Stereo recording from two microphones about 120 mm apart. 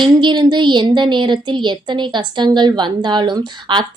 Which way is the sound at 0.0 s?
40° right (ahead or behind).